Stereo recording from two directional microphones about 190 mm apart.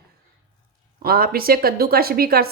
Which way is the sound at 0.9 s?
50° right (ahead or behind).